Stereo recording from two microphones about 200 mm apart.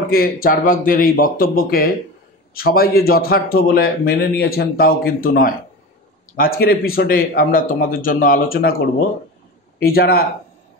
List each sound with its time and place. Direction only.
0.1 s a man's voice: 50° left (ahead or behind)
6.6 s a man's voice: 50° left (ahead or behind)